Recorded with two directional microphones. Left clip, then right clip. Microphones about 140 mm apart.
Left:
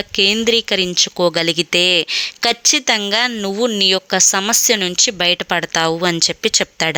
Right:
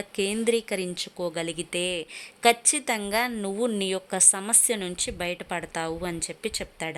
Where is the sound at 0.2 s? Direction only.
15° left (ahead or behind).